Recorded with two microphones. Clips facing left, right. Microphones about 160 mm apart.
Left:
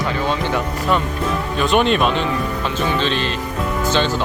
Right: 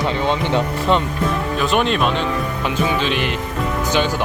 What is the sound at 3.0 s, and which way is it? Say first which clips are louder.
Speech: even; 15° right (ahead or behind).